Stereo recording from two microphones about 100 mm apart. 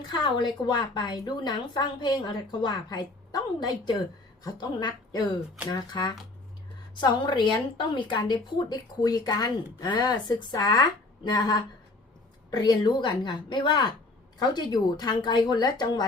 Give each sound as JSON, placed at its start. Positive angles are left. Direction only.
{"t": 0.1, "sound": "a woman's voice", "side_deg": 50}